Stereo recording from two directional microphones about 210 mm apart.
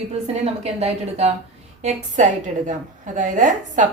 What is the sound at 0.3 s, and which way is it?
A woman's voice, 30° right (ahead or behind).